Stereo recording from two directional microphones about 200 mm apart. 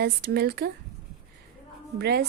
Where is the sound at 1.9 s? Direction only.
55° right (ahead or behind).